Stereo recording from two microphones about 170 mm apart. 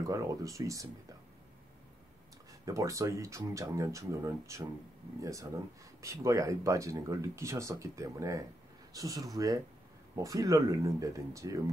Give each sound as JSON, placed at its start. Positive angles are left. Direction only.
{"t": 0.0, "sound": "speech", "side_deg": -20}
{"t": 2.6, "sound": "speech", "side_deg": -20}